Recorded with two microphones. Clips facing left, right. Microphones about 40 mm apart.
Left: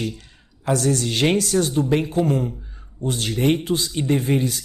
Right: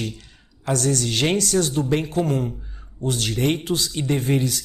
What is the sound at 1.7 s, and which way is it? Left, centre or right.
Speech, centre.